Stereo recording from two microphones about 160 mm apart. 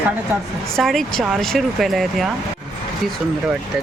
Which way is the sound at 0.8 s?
Centre (ahead or behind).